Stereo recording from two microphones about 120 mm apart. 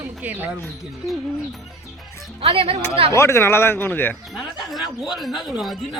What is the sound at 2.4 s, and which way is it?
Speech, 50° right (ahead or behind).